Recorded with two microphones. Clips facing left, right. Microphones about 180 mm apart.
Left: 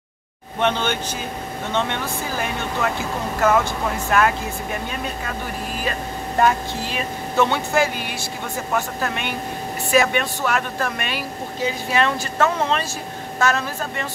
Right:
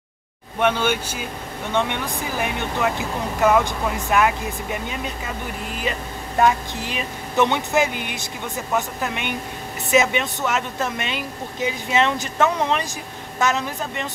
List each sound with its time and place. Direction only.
0.6 s speech: 10° right (ahead or behind)
6.8 s speech: 20° right (ahead or behind)